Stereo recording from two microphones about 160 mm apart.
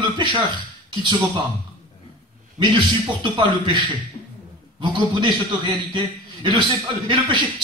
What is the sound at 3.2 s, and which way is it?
A man's voice, 30° right (ahead or behind).